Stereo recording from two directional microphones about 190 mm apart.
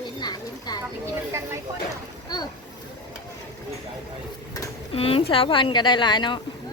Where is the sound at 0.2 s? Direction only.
20° left (ahead or behind).